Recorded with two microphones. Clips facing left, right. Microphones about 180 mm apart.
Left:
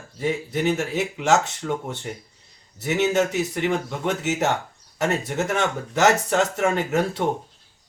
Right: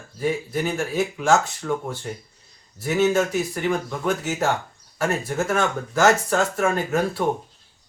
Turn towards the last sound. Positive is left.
turn(degrees=20)  # may be behind; listen again after turning